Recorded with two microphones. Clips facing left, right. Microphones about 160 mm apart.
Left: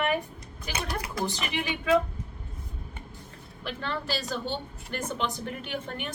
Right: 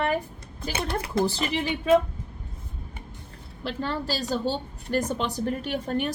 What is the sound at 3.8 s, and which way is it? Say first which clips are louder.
A woman's voice: right 3 dB; 40° right (ahead or behind).